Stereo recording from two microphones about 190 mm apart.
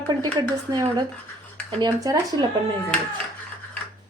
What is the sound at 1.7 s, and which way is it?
Speech, 20° right (ahead or behind).